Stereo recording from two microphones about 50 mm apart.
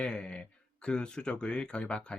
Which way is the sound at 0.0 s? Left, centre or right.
Centre.